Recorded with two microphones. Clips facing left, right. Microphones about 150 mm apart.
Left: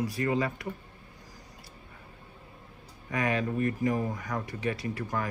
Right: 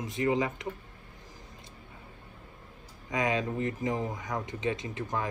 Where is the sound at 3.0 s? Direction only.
20° right (ahead or behind).